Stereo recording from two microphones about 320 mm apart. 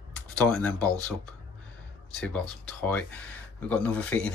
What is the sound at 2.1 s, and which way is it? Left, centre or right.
Speech, centre.